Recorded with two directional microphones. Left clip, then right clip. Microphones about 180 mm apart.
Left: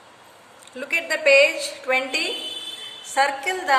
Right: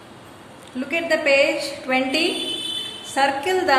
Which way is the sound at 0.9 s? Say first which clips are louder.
Left 1 dB; 25° left (ahead or behind).